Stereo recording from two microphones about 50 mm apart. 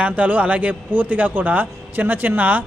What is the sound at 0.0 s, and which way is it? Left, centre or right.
Speech, right.